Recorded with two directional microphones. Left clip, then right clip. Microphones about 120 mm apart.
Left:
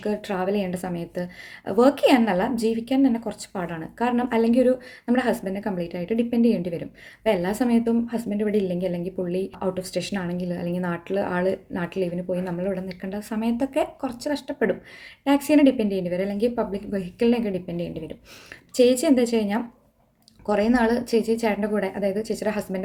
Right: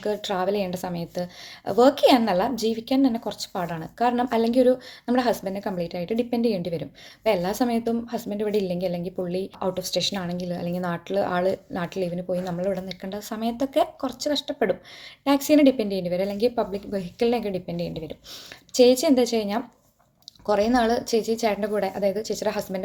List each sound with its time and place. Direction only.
0.0 s a woman's voice: 25° left (ahead or behind)